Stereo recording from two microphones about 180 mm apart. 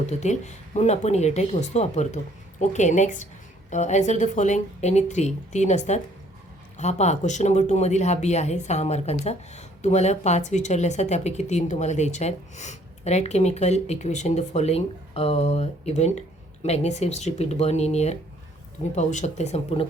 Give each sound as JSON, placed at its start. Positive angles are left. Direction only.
{"t": 0.0, "sound": "speech", "side_deg": 40}